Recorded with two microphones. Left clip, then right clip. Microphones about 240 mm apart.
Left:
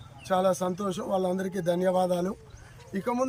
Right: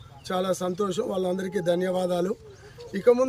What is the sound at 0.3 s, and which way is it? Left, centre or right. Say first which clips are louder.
Speech: left 2 dB; centre.